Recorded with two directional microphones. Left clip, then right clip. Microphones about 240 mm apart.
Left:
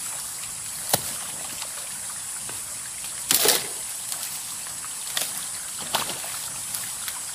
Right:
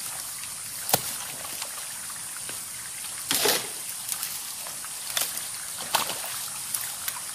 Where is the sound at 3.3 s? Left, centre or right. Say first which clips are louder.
Left 3 dB; left.